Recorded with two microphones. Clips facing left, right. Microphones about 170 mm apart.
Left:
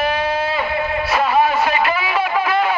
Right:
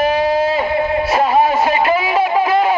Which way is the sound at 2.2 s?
30° right (ahead or behind).